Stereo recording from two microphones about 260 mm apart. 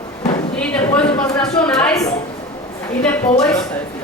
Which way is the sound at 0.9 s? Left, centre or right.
Centre.